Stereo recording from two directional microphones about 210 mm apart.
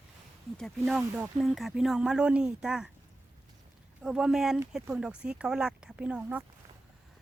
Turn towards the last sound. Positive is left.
turn(degrees=-5)  # may be behind; listen again after turning